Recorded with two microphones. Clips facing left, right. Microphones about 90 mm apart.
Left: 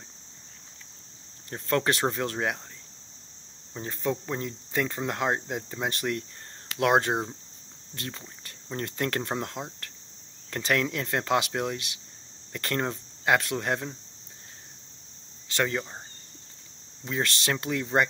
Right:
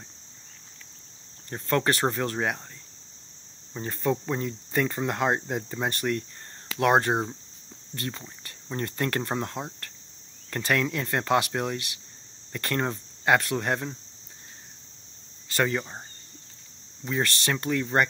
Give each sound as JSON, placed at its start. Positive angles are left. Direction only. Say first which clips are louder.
{"t": 1.5, "sound": "speech", "louder": "right 1 dB", "side_deg": 0}
{"t": 3.7, "sound": "speech", "louder": "right 3 dB", "side_deg": 0}
{"t": 15.4, "sound": "speech", "louder": "right 2 dB", "side_deg": -5}
{"t": 17.0, "sound": "speech", "louder": "right 2 dB", "side_deg": 0}